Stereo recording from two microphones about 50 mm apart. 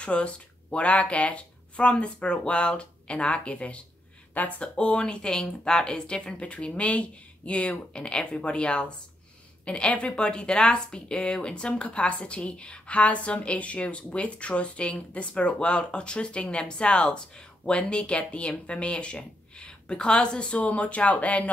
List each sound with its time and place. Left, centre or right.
0.0 s a woman's voice: left
4.7 s a woman's voice: left